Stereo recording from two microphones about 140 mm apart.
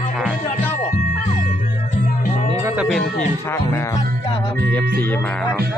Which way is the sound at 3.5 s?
20° left (ahead or behind).